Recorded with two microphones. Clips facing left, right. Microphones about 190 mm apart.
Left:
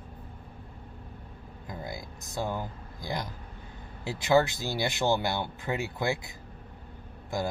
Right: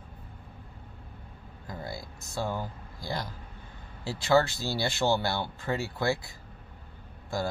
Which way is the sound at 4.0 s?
20° left (ahead or behind).